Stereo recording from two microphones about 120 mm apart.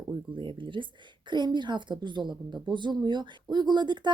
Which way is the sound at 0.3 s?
45° right (ahead or behind).